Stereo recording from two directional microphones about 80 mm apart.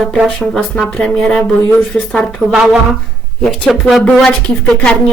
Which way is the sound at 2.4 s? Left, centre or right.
Right.